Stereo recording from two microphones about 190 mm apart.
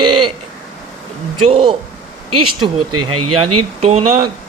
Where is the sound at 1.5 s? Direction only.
25° right (ahead or behind).